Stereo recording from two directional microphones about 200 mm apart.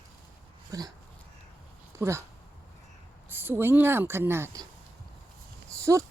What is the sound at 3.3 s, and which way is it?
Speech, 10° right (ahead or behind).